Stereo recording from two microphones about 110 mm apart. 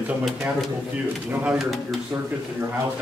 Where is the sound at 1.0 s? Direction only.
15° right (ahead or behind).